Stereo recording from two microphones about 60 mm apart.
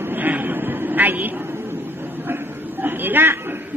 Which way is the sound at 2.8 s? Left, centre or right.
Right.